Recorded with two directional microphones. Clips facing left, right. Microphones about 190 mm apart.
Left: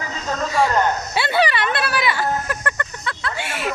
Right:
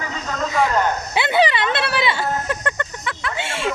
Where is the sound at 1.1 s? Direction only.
20° right (ahead or behind).